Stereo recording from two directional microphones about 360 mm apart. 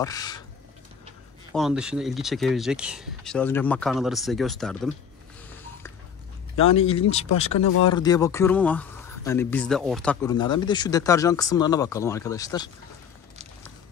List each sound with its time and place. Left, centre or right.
0.0 s speech: centre
1.5 s speech: centre
6.5 s speech: centre
7.5 s speech: left
7.9 s speech: centre